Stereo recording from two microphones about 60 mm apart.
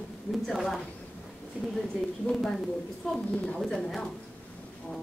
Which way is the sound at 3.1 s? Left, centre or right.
Centre.